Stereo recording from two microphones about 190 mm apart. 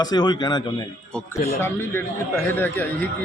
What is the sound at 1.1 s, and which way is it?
A man's voice, 5° left (ahead or behind).